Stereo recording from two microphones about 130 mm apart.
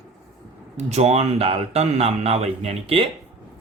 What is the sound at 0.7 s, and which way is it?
Speech, 55° right (ahead or behind).